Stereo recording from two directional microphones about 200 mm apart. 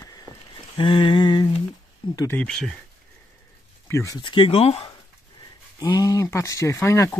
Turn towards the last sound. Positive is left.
turn(degrees=15)  # may be behind; listen again after turning